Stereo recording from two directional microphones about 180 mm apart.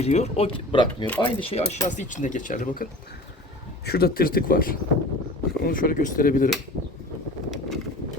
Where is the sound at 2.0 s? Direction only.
45° left (ahead or behind).